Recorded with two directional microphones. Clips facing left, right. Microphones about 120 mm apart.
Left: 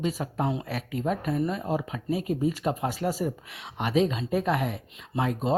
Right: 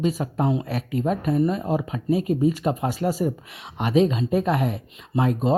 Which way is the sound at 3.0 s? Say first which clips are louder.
Right 4 dB; 60° right (ahead or behind).